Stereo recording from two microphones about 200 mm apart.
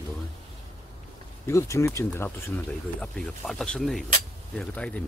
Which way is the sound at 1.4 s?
15° left (ahead or behind).